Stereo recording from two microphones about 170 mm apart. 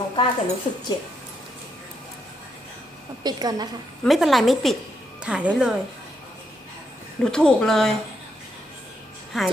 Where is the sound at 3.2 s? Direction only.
25° right (ahead or behind).